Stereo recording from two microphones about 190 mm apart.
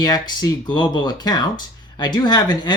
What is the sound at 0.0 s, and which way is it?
Speech, 20° left (ahead or behind).